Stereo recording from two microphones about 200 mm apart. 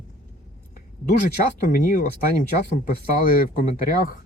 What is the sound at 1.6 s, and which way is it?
Speech, 40° left (ahead or behind).